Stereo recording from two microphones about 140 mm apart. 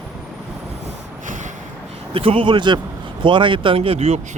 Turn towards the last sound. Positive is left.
turn(degrees=-45)  # may be behind; listen again after turning